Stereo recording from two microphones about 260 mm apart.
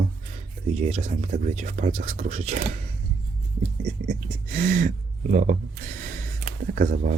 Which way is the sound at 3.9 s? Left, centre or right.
Right.